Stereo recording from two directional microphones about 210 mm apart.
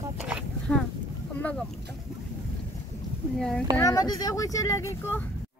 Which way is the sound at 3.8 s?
15° left (ahead or behind).